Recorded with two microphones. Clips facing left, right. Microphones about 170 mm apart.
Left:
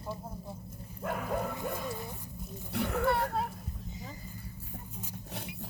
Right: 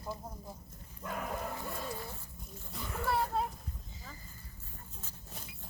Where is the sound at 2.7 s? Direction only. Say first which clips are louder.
Left 12 dB; 70° left (ahead or behind).